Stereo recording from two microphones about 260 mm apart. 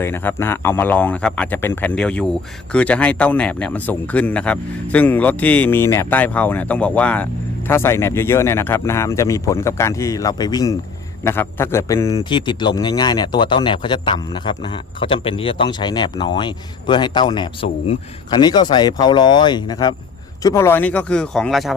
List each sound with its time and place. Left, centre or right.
0.0 s a man's voice: centre